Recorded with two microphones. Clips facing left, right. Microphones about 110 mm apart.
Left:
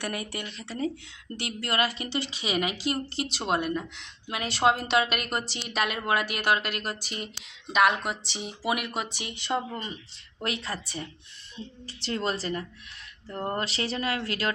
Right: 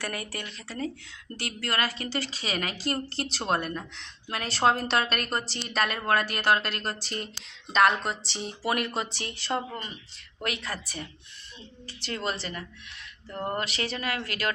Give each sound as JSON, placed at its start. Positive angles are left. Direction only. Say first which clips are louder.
{"t": 0.0, "sound": "a woman's voice", "louder": "left 2 dB", "side_deg": 20}
{"t": 10.4, "sound": "a woman's voice", "louder": "left 1 dB", "side_deg": 30}